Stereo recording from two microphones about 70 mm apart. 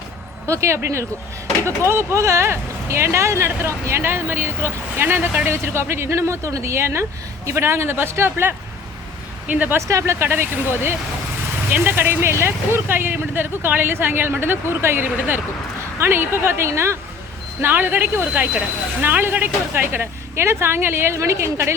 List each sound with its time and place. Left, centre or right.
0.4 s speech: right
9.5 s speech: right
9.7 s speech: right
10.2 s speech: right